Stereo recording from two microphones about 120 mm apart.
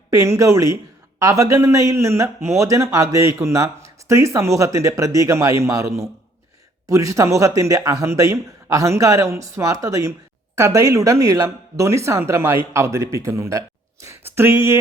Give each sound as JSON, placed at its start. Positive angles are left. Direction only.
{"t": 0.1, "sound": "a man's voice", "side_deg": -25}